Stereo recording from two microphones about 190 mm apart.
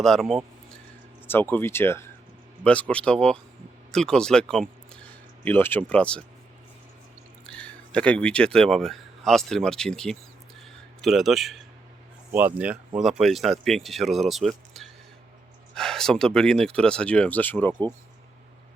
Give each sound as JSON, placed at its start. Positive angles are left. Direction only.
{"t": 0.0, "sound": "speech", "side_deg": 0}
{"t": 7.4, "sound": "speech", "side_deg": 5}